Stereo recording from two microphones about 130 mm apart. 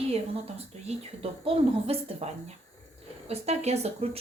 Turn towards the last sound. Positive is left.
turn(degrees=-50)  # may be behind; listen again after turning